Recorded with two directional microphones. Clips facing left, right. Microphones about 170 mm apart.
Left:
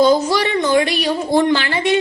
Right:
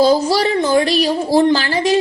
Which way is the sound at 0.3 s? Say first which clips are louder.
Right 2 dB; 35° right (ahead or behind).